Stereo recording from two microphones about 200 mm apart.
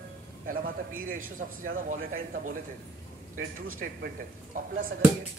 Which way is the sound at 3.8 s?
60° right (ahead or behind).